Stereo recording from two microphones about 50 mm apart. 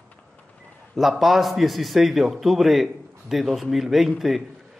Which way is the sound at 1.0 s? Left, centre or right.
Centre.